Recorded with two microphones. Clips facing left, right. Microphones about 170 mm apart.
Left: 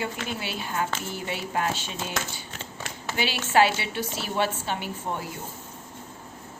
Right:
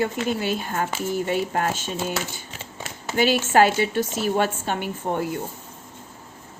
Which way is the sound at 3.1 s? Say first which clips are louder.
Right 5 dB; 45° right (ahead or behind).